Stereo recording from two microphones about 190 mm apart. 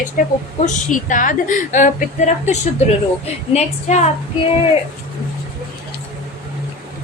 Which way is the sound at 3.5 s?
35° left (ahead or behind).